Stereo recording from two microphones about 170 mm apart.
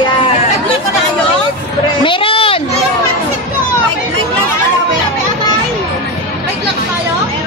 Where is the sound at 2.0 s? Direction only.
30° left (ahead or behind).